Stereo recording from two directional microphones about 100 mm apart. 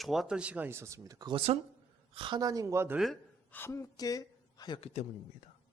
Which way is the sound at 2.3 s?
40° right (ahead or behind).